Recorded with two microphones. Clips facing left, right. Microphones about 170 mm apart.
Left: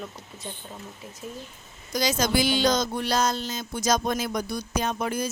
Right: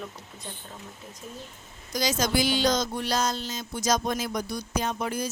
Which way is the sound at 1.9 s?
60° left (ahead or behind).